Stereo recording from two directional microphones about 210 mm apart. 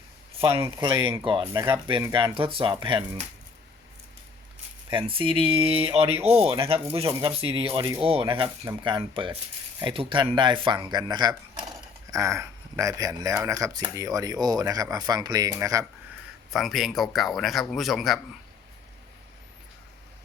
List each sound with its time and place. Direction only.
0.5 s speech: 15° right (ahead or behind)
4.9 s speech: 25° right (ahead or behind)
16.5 s speech: centre (ahead or behind)